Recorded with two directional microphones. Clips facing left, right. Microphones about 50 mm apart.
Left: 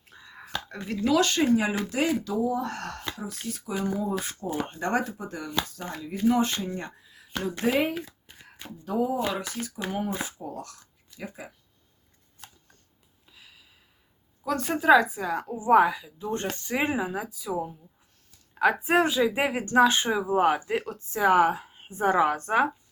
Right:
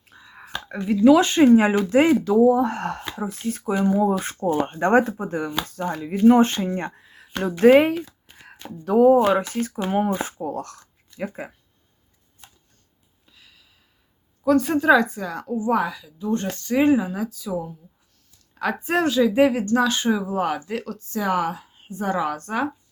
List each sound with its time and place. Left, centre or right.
0.1 s whispering: centre
0.5 s a sound: right
1.1 s speech: right
3.6 s speech: right
7.3 s speech: right
8.8 s speech: right
9.1 s speech: right
13.2 s a sound: centre
14.4 s a woman's voice: centre; by 22.7 s left